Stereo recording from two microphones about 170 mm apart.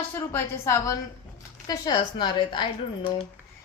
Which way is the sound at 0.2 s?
15° left (ahead or behind).